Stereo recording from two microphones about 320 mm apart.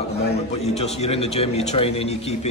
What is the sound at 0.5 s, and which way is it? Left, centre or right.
Speech, centre.